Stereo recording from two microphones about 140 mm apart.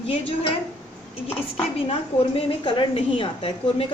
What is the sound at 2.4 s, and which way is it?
A woman's voice, 35° left (ahead or behind).